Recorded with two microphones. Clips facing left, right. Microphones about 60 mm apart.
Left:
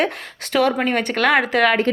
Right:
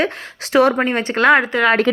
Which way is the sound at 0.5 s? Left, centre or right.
Right.